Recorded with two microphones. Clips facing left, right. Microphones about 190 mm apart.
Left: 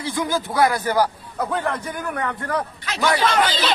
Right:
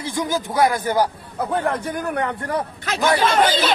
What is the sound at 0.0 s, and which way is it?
Speech, 15° right (ahead or behind).